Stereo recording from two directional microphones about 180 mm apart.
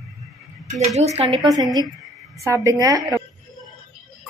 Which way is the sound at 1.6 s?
20° right (ahead or behind).